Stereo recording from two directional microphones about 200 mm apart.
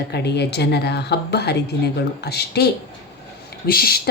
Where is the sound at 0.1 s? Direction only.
55° left (ahead or behind).